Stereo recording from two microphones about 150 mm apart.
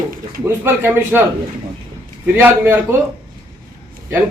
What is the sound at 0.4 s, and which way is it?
Speech, 15° right (ahead or behind).